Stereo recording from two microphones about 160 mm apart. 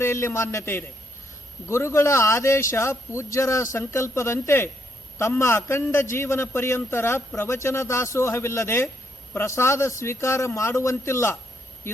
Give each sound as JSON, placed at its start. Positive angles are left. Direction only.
{"t": 0.0, "sound": "a man's voice", "side_deg": 15}